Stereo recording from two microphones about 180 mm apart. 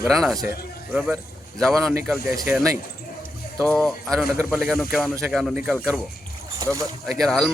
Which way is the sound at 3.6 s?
5° left (ahead or behind).